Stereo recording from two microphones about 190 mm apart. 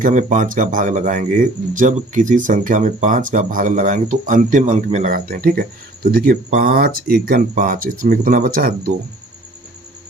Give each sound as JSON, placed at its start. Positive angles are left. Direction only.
{"t": 0.0, "sound": "speech", "side_deg": -40}